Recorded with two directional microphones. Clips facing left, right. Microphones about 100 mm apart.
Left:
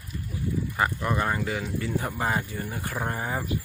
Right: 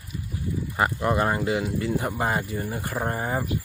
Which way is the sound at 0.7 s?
15° right (ahead or behind).